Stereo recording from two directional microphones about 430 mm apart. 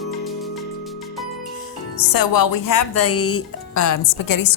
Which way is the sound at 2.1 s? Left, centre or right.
Left.